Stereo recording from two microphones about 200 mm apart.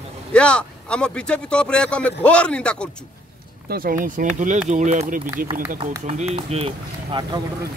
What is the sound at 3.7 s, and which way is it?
Speech, 45° right (ahead or behind).